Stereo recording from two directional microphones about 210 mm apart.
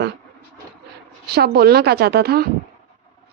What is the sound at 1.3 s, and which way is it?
A woman's voice, 50° right (ahead or behind).